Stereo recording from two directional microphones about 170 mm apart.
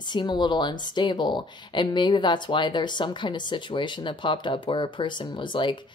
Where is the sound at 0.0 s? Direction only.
25° left (ahead or behind).